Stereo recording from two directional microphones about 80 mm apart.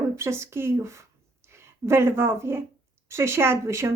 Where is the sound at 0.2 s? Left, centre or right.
Right.